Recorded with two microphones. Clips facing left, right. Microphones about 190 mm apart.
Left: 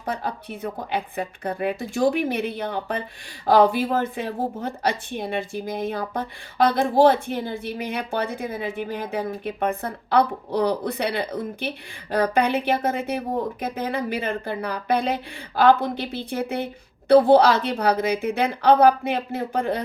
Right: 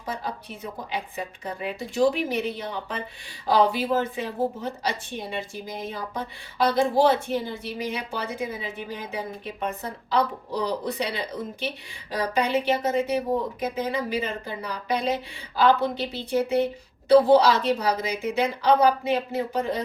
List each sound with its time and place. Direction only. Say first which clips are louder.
0.0 s a woman's voice: left 4 dB; 55° left (ahead or behind)